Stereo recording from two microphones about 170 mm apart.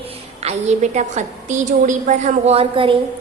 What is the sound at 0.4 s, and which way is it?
A woman's voice, 45° right (ahead or behind).